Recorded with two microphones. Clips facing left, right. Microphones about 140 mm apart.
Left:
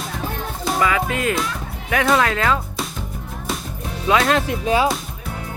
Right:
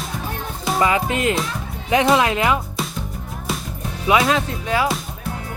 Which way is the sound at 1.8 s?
20° right (ahead or behind).